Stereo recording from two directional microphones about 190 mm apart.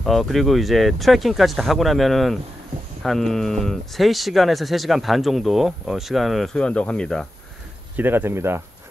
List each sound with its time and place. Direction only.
0.0 s speech: centre (ahead or behind)
7.9 s speech: 10° right (ahead or behind)